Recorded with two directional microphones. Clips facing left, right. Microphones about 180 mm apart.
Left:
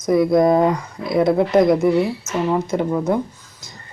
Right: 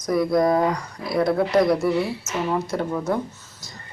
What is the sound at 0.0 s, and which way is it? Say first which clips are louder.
Speech: left 5 dB; 25° left (ahead or behind).